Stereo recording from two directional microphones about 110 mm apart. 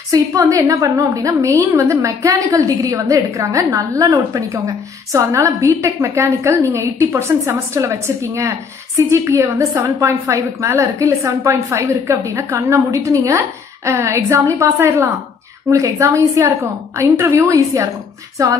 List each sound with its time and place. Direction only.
0.1 s a woman's voice: 30° right (ahead or behind)
18.4 s female singing: 30° right (ahead or behind)